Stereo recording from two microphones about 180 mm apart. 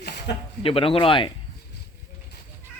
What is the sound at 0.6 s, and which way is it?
Speech, 30° left (ahead or behind).